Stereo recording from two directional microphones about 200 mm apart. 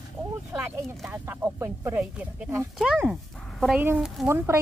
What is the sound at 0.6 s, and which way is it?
Speech, 10° right (ahead or behind).